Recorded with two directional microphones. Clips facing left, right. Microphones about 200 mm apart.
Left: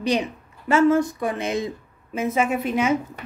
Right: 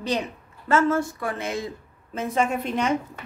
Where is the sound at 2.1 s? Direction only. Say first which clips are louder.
Left 2 dB; 5° left (ahead or behind).